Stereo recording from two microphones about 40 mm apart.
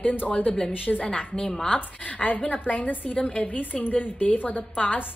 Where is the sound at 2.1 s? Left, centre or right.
Left.